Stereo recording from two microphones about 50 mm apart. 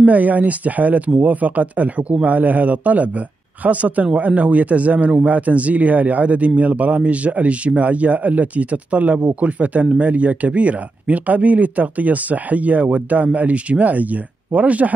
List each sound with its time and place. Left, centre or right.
0.0 s a man's voice: right